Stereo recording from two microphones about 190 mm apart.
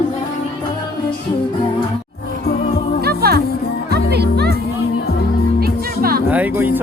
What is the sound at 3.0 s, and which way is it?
Music, 55° right (ahead or behind).